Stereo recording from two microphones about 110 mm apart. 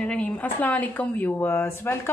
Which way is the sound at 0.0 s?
10° left (ahead or behind).